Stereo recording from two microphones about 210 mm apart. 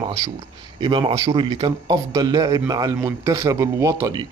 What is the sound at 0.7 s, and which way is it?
A man's voice, 20° right (ahead or behind).